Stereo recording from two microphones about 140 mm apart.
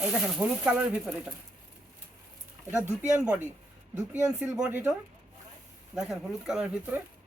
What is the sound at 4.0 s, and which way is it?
Speech, 20° right (ahead or behind).